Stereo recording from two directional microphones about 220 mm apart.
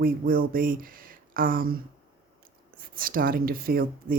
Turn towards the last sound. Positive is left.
turn(degrees=-40)  # may be behind; listen again after turning